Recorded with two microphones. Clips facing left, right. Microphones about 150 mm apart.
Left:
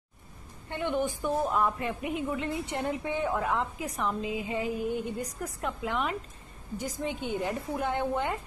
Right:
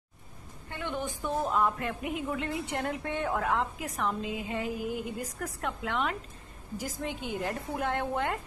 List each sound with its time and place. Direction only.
0.7 s a woman's voice: 20° left (ahead or behind)
1.2 s a woman's voice: centre (ahead or behind)